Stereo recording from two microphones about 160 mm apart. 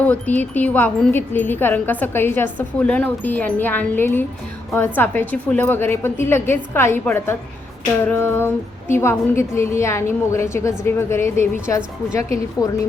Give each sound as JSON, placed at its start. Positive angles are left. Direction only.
{"t": 0.0, "sound": "a woman's voice", "side_deg": 10}